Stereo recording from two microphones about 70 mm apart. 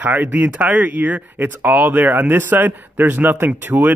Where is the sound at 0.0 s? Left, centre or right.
Right.